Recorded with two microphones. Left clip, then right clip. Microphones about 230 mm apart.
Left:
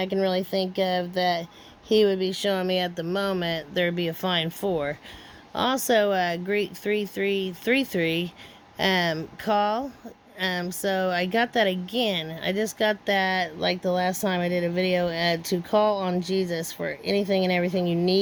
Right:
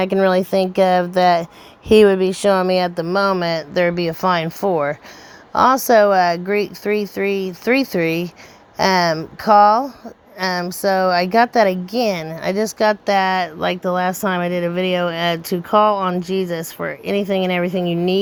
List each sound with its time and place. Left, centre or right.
0.0 s speech: right
3.0 s speech: centre
12.8 s speech: centre